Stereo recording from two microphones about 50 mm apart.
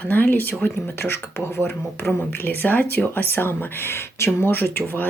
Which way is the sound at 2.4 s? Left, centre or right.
Left.